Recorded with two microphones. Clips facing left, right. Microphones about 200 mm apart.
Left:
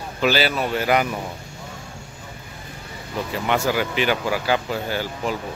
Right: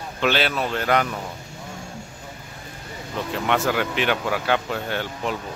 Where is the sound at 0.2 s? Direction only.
5° left (ahead or behind).